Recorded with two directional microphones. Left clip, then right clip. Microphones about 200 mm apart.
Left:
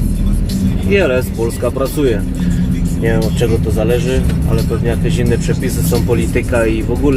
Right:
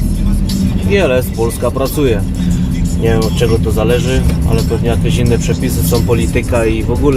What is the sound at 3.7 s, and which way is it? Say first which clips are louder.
Speech: right 1 dB; 15° right (ahead or behind).